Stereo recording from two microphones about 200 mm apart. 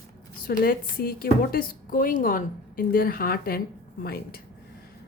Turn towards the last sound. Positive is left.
turn(degrees=50)  # may be behind; listen again after turning